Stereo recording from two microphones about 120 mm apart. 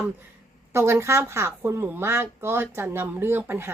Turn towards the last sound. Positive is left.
turn(degrees=-20)  # may be behind; listen again after turning